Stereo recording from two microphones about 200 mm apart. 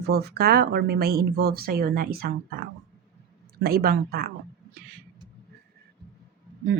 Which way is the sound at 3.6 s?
50° right (ahead or behind).